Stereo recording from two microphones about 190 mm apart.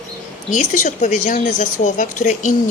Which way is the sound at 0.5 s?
40° left (ahead or behind).